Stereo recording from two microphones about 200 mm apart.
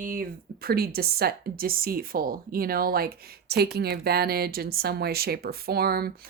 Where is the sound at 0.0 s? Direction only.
45° right (ahead or behind).